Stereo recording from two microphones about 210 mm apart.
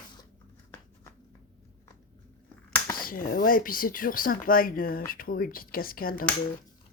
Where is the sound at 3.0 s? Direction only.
40° left (ahead or behind).